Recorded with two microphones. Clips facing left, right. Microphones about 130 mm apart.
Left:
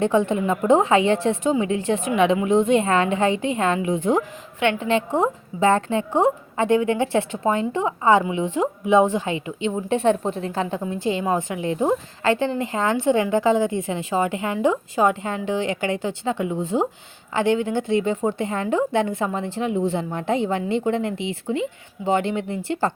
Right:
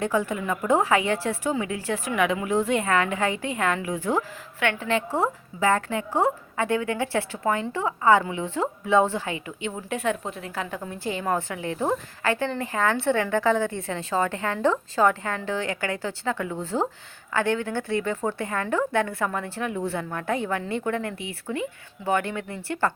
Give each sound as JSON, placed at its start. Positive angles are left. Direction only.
{"t": 0.0, "sound": "a woman's voice", "side_deg": 25}